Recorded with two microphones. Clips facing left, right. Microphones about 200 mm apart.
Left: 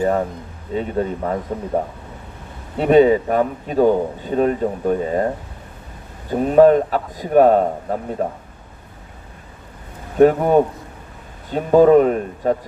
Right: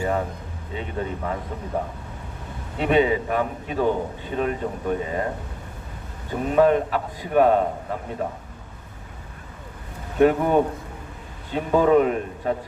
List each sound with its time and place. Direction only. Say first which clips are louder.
0.7 s a man's voice: left 8 dB; 40° left (ahead or behind)
2.7 s a man's voice: left 7 dB; 40° left (ahead or behind)
6.3 s a man's voice: left 6 dB; 40° left (ahead or behind)
10.2 s a man's voice: left 5 dB; 40° left (ahead or behind)